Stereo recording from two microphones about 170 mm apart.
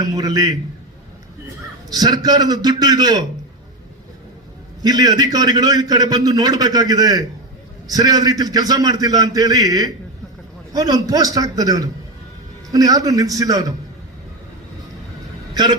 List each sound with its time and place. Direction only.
0.0 s a man's voice: 20° right (ahead or behind)
1.9 s a man's voice: 25° right (ahead or behind)
4.8 s a man's voice: 25° right (ahead or behind)